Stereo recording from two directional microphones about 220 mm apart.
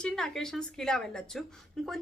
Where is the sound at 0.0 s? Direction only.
Centre (ahead or behind).